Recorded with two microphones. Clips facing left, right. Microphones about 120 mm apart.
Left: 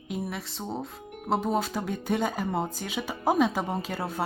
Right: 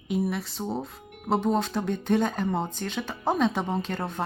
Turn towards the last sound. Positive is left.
turn(degrees=5)  # may be behind; listen again after turning